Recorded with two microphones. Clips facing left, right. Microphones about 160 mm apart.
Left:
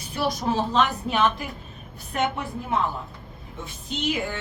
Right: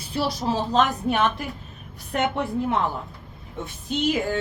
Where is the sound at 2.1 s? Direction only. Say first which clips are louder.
Right 2 dB; 60° right (ahead or behind).